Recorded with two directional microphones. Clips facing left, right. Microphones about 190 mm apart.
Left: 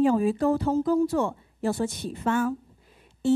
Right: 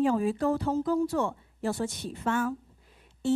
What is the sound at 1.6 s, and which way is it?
Speech, 10° left (ahead or behind).